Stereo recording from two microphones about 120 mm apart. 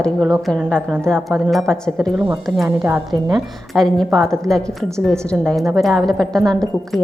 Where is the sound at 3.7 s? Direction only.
5° left (ahead or behind).